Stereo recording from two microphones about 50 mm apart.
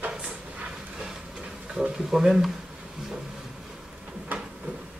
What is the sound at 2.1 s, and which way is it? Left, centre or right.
Speech, centre.